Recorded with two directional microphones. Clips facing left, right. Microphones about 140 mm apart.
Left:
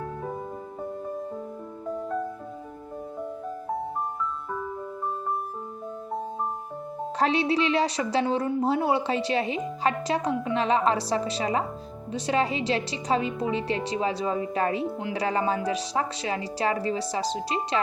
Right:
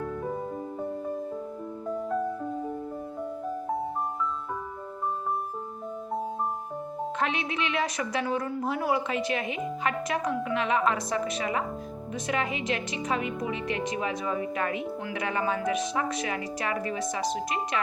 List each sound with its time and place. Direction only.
7.2 s a woman's voice: 35° left (ahead or behind)